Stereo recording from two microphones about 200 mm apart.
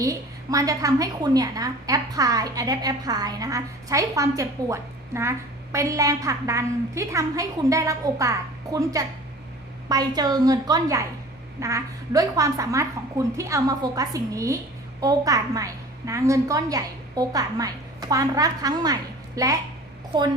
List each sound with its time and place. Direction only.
0.0 s a woman's voice: 15° right (ahead or behind)